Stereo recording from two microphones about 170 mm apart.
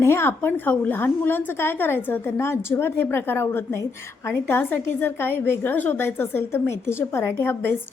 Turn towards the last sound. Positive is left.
turn(degrees=15)  # may be behind; listen again after turning